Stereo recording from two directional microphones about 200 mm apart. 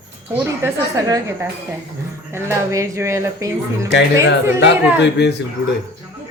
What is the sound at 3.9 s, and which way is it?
Speech, 60° left (ahead or behind).